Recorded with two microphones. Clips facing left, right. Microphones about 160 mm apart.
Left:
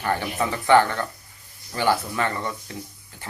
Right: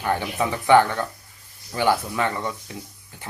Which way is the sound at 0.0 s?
10° right (ahead or behind).